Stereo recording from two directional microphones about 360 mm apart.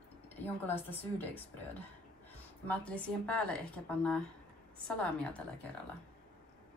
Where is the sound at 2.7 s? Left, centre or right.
Centre.